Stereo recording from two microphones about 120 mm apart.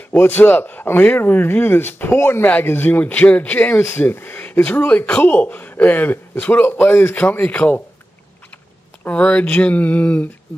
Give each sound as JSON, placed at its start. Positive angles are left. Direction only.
{"t": 0.1, "sound": "speech", "side_deg": 15}
{"t": 9.0, "sound": "speech", "side_deg": 10}